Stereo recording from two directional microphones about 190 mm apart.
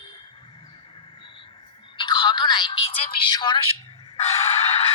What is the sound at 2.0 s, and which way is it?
Music, 25° left (ahead or behind).